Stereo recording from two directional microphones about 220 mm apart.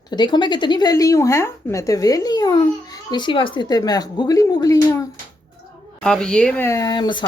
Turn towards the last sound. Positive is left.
turn(degrees=20)  # may be behind; listen again after turning